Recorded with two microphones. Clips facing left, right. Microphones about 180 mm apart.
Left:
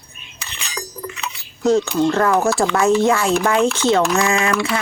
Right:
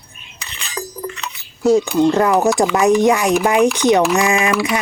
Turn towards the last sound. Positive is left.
turn(degrees=-15)  # may be behind; listen again after turning